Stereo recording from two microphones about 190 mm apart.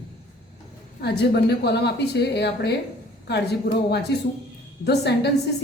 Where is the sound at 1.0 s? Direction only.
60° left (ahead or behind).